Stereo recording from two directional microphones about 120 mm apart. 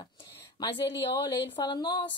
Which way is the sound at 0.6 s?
40° left (ahead or behind).